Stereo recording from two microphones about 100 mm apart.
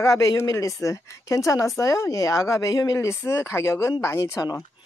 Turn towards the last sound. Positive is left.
turn(degrees=30)  # may be behind; listen again after turning